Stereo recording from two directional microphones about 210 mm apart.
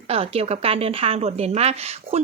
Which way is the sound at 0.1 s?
30° right (ahead or behind).